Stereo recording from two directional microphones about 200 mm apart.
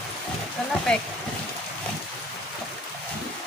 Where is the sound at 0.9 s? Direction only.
5° left (ahead or behind).